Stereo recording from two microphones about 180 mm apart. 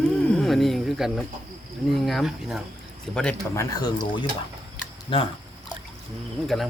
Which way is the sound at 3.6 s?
20° left (ahead or behind).